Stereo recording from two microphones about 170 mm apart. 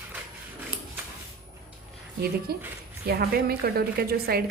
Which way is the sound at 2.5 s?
65° right (ahead or behind).